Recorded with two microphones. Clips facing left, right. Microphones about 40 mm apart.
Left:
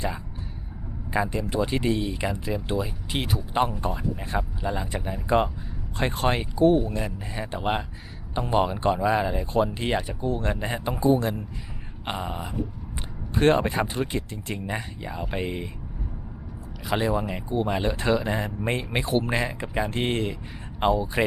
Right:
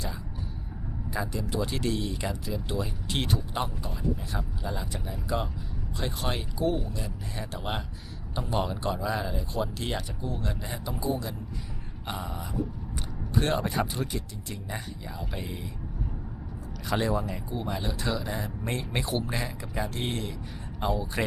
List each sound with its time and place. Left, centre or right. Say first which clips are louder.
1.1 s speech: left 6 dB; left
1.6 s speech: left 6 dB; centre
2.8 s speech: left 2 dB; centre
3.8 s speech: left 4 dB; left
7.3 s speech: left 7 dB; left
11.1 s a man's voice: left 10 dB; left
12.0 s speech: left 5 dB; left
16.8 s speech: left 3 dB; centre
17.2 s speech: left 7 dB; left